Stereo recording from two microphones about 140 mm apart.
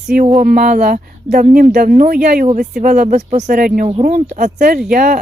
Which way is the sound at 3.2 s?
55° right (ahead or behind).